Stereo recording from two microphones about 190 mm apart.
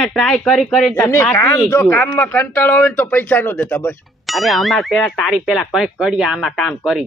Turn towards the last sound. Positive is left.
turn(degrees=0)  # may be behind; listen again after turning